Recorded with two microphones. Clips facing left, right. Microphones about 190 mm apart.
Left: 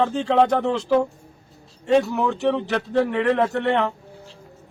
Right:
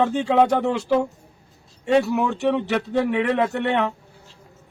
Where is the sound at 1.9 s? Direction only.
5° right (ahead or behind).